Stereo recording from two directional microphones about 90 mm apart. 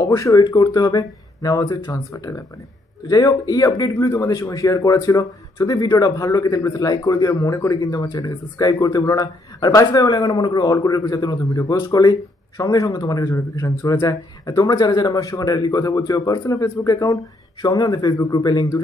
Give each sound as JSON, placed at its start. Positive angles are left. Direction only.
{"t": 0.0, "sound": "a man's voice", "side_deg": 40}